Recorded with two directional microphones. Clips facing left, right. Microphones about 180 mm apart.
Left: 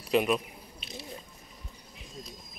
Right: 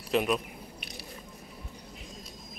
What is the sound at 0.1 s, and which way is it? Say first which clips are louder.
Speech: left 1 dB; centre (ahead or behind).